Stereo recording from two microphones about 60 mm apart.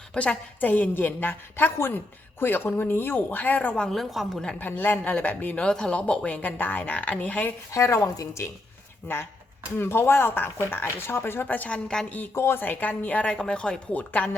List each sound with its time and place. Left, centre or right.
0.1 s speech: centre
3.9 s a woman's voice: centre
4.6 s a woman's voice: left
5.5 s a woman's voice: centre
7.7 s a woman's voice: left
9.1 s speech: left
11.9 s speech: centre
12.3 s a woman's voice: left
13.3 s speech: centre
13.9 s a woman's voice: left